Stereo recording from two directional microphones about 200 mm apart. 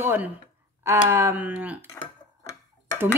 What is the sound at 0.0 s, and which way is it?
A woman's voice, 10° right (ahead or behind).